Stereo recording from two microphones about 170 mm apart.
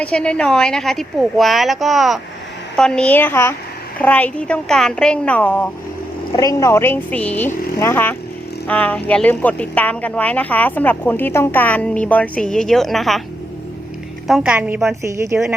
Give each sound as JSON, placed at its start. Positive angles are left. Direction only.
{"t": 0.0, "sound": "speech", "side_deg": 5}
{"t": 6.3, "sound": "speech", "side_deg": 20}
{"t": 14.3, "sound": "speech", "side_deg": -5}
{"t": 15.0, "sound": "speech", "side_deg": -15}